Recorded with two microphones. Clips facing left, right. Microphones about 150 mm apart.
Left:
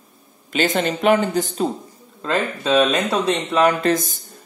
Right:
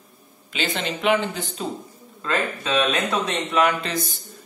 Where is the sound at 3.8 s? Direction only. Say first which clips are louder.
Left 9 dB; 45° left (ahead or behind).